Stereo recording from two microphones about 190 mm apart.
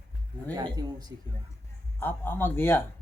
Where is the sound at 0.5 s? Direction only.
20° right (ahead or behind).